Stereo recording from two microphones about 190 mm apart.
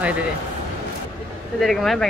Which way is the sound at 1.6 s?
Centre (ahead or behind).